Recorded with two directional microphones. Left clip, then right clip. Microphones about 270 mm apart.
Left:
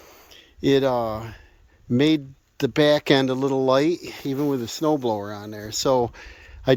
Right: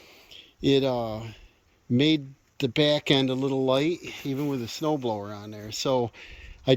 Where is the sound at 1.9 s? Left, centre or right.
Centre.